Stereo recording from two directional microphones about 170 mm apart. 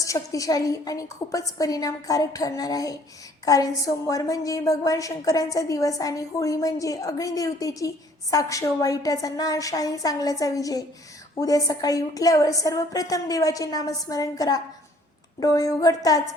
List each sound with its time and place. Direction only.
0.0 s a woman's voice: 20° left (ahead or behind)